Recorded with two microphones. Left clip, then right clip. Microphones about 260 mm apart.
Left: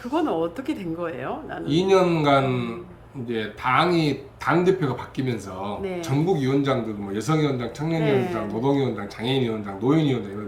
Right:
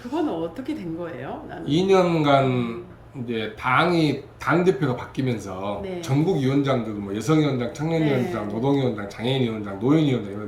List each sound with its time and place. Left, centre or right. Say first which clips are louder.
0.1 s speech: left 2 dB; centre